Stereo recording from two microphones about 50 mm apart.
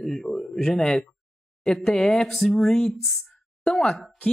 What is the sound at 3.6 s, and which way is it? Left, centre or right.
Speech, centre.